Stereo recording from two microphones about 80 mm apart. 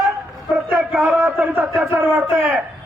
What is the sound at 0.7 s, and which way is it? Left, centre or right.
A man's voice, centre.